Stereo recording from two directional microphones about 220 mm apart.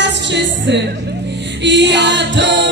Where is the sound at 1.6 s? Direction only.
55° right (ahead or behind).